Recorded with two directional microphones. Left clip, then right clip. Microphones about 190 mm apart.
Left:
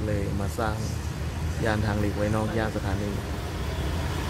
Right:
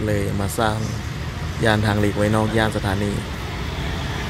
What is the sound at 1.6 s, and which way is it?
Speech, 30° right (ahead or behind).